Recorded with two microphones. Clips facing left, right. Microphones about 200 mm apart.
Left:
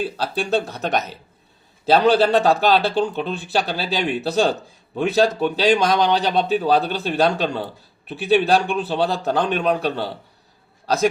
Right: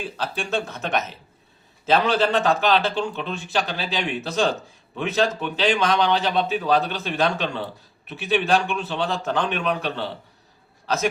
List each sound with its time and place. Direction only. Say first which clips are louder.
0.0 s a man's voice: left 5 dB; 35° left (ahead or behind)